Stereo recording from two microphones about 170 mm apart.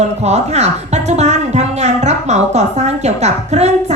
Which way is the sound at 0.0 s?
40° right (ahead or behind).